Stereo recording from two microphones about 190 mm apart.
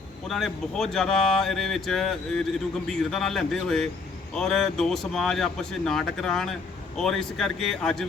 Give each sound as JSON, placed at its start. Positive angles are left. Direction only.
{"t": 0.3, "sound": "speech", "side_deg": 0}